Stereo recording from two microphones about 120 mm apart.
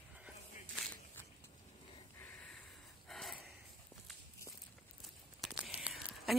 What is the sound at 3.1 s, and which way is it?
Gasp, 5° left (ahead or behind).